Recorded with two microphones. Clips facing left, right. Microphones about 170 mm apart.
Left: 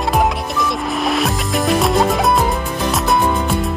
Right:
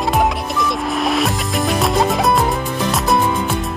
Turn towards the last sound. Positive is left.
turn(degrees=0)  # may be behind; listen again after turning